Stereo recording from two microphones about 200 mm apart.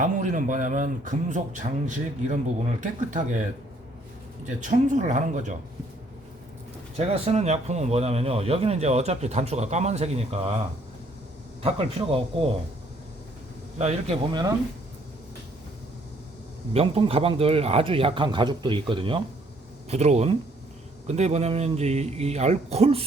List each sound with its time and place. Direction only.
0.0 s speech: 40° right (ahead or behind)
4.4 s speech: 35° right (ahead or behind)
6.9 s speech: 30° right (ahead or behind)
11.6 s speech: 30° right (ahead or behind)
13.7 s speech: 30° right (ahead or behind)
16.7 s speech: 30° right (ahead or behind)